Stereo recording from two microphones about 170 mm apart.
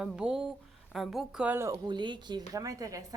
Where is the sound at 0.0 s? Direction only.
5° right (ahead or behind).